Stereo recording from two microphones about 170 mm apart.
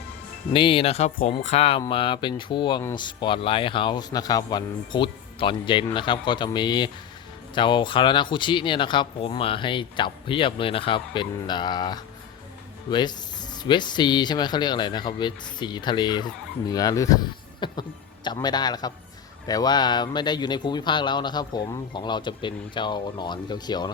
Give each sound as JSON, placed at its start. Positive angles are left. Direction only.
{"t": 0.5, "sound": "speech", "side_deg": 30}